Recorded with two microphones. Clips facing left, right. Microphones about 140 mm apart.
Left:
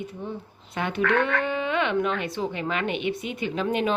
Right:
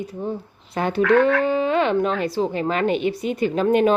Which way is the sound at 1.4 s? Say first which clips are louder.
Right 6 dB; 35° right (ahead or behind).